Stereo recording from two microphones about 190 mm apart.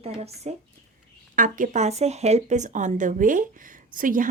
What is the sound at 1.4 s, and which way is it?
A woman's voice, 45° right (ahead or behind).